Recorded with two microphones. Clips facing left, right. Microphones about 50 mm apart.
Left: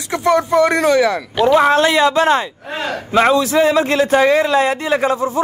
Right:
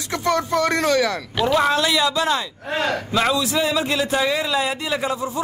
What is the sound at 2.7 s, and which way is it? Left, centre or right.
A man's voice, left.